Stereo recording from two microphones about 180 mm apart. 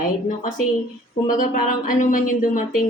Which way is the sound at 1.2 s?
45° left (ahead or behind).